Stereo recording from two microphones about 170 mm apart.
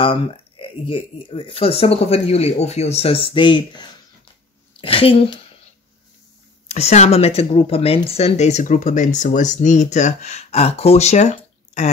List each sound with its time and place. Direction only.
0.0 s speech: 30° left (ahead or behind)
6.7 s speech: 40° left (ahead or behind)